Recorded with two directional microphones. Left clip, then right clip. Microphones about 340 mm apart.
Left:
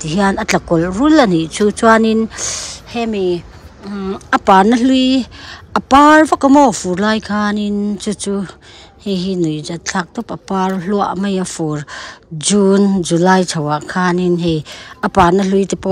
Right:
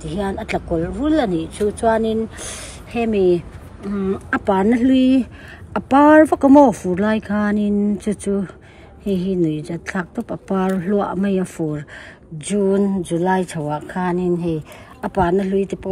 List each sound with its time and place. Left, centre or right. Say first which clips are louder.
0.0 s speech: left 9 dB; centre